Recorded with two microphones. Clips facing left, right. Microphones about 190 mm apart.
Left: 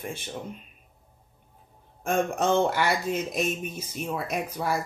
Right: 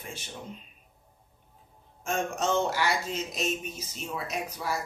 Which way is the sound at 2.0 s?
55° left (ahead or behind).